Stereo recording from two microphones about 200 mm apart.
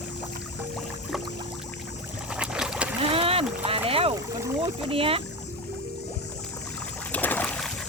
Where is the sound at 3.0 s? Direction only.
30° right (ahead or behind).